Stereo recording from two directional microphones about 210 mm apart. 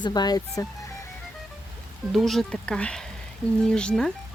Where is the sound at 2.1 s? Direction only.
Centre (ahead or behind).